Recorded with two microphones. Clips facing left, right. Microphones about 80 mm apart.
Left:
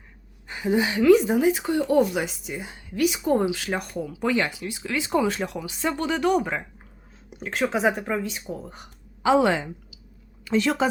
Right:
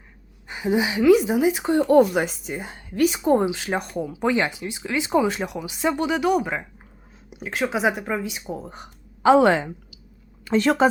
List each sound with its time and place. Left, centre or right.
0.4 s a woman's voice: centre
1.6 s speech: right
1.9 s a woman's voice: right
3.3 s a woman's voice: right; by 8.2 s centre
8.2 s speech: centre
9.2 s a woman's voice: right
10.4 s a woman's voice: right